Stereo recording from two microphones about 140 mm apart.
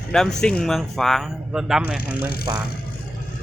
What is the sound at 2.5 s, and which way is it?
Speech, 25° right (ahead or behind).